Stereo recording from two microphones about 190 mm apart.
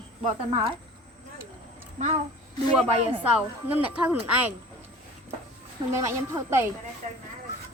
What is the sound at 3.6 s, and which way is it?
Speech, 10° right (ahead or behind).